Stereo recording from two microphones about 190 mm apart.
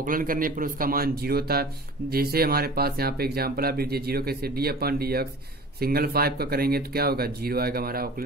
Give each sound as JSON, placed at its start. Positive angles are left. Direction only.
{"t": 0.0, "sound": "a man's voice", "side_deg": -45}